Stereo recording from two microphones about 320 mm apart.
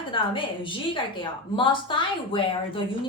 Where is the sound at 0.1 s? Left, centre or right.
Centre.